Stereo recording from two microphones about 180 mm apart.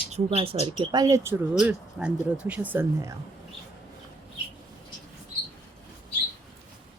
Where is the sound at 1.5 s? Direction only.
5° right (ahead or behind).